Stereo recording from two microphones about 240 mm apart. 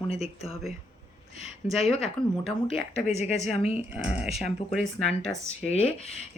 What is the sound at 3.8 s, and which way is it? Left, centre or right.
Speech, centre.